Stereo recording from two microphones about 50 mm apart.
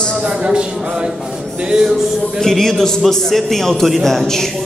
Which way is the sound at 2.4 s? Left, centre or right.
Centre.